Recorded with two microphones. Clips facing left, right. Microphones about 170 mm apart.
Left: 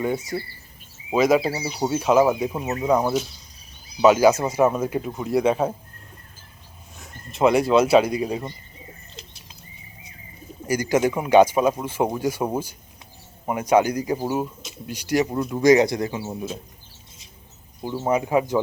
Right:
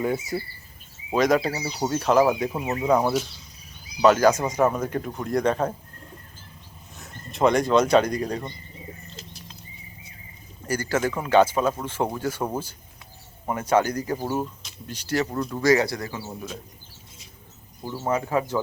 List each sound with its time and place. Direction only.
0.0 s speech: centre (ahead or behind)
6.9 s speech: centre (ahead or behind)
10.7 s speech: 15° left (ahead or behind)
17.8 s speech: 15° left (ahead or behind)